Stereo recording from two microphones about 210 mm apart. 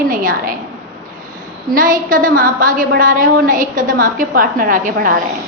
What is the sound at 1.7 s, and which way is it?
A woman's voice, 40° right (ahead or behind).